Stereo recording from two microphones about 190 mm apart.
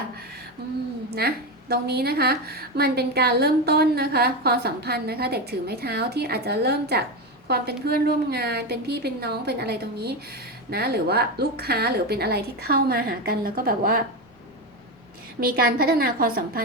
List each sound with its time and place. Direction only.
1.1 s a woman's voice: 55° right (ahead or behind)
15.4 s a woman's voice: 50° right (ahead or behind)